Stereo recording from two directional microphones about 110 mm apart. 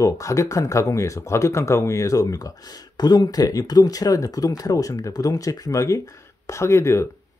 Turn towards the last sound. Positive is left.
turn(degrees=25)  # may be behind; listen again after turning